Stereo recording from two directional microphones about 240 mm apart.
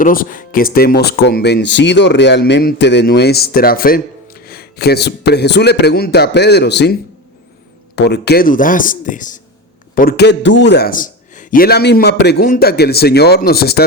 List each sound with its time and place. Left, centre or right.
0.0 s speech: left
7.9 s a man's voice: left